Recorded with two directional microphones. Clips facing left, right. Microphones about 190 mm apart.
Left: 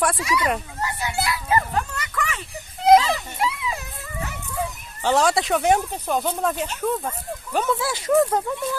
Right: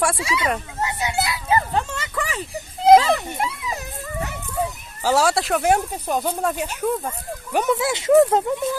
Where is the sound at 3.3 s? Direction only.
45° right (ahead or behind).